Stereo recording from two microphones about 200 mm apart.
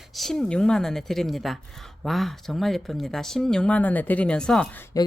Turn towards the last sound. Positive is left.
turn(degrees=15)  # may be behind; listen again after turning